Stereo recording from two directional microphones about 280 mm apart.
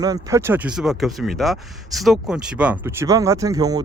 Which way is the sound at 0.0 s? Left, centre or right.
Centre.